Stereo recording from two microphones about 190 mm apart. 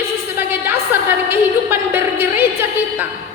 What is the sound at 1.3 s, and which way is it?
A woman's voice, 10° right (ahead or behind).